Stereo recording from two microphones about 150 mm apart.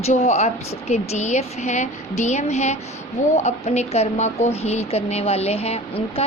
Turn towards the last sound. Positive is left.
turn(degrees=40)  # may be behind; listen again after turning